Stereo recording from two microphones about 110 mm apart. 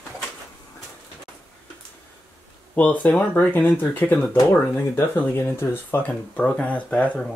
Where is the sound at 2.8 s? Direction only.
15° left (ahead or behind).